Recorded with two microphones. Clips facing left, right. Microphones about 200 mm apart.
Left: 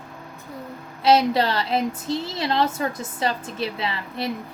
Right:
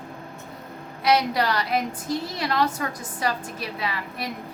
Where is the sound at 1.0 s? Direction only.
25° left (ahead or behind).